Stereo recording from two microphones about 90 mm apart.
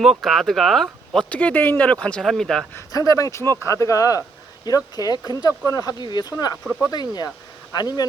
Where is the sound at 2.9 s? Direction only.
45° left (ahead or behind).